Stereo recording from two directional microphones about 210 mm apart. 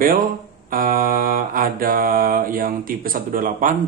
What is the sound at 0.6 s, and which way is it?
Mantra, 40° right (ahead or behind).